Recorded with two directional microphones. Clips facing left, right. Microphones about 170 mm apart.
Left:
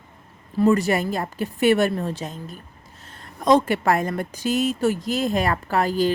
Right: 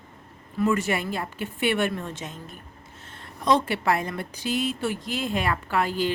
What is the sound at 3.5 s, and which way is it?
A woman's voice, 45° left (ahead or behind).